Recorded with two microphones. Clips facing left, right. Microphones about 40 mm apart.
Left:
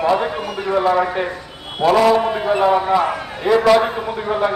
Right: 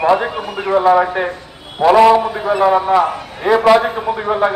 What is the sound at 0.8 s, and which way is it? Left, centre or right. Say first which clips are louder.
A man's voice: right 6 dB; centre.